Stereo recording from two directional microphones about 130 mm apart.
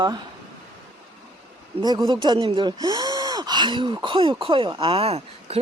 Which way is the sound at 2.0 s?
35° right (ahead or behind).